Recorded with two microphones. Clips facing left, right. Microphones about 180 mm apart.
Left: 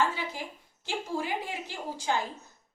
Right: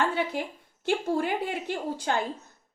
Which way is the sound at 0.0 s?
60° right (ahead or behind).